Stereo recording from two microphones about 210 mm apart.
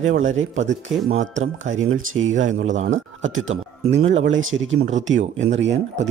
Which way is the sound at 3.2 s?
70° right (ahead or behind).